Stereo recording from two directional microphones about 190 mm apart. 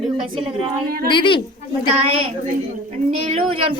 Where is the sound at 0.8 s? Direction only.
50° right (ahead or behind).